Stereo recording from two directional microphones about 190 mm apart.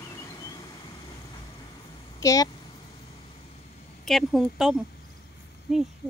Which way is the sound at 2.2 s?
15° left (ahead or behind).